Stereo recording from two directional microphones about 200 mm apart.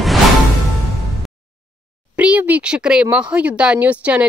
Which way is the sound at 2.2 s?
5° right (ahead or behind).